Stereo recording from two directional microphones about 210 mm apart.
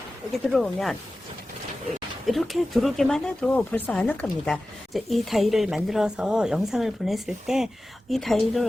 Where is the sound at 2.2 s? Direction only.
Centre (ahead or behind).